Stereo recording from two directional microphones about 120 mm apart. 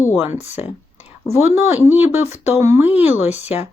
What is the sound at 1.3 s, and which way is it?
Speech, 20° right (ahead or behind).